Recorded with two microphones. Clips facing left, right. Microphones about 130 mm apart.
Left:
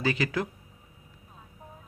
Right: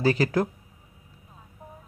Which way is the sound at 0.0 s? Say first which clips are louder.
Right 6 dB; 40° right (ahead or behind).